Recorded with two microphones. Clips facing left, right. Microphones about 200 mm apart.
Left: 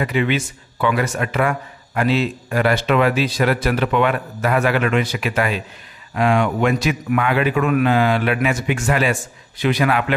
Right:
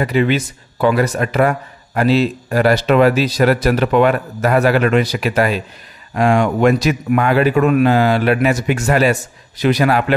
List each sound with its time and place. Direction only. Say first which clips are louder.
0.0 s speech: right 4 dB; 40° right (ahead or behind)